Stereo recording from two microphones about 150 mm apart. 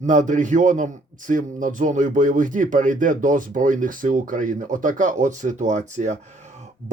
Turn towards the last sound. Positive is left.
turn(degrees=-55)  # may be behind; listen again after turning